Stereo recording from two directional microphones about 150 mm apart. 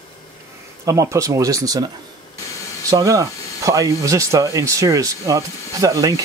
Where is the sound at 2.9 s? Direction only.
20° right (ahead or behind).